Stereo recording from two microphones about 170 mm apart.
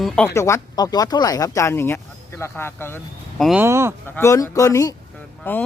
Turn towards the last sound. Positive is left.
turn(degrees=10)  # may be behind; listen again after turning